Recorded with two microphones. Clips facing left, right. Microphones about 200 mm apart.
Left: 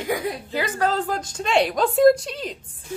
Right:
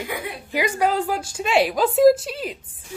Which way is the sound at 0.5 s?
15° right (ahead or behind).